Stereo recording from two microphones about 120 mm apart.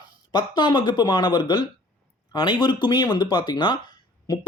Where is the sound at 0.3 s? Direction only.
40° left (ahead or behind).